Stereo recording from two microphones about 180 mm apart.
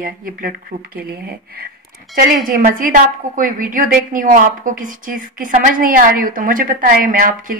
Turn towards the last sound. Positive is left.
turn(degrees=-50)  # may be behind; listen again after turning